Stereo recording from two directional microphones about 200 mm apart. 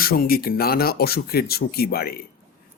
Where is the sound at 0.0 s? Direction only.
50° left (ahead or behind).